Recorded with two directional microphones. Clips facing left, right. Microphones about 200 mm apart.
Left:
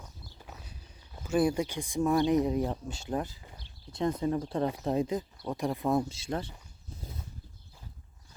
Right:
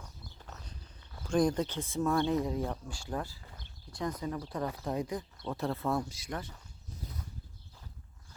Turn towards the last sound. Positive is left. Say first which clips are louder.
# left 5 dB
turn(degrees=30)  # may be behind; listen again after turning